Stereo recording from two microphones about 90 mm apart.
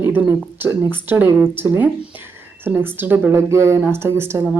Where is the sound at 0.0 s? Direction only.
25° right (ahead or behind).